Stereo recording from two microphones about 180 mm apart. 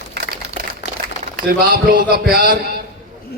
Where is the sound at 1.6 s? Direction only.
55° right (ahead or behind).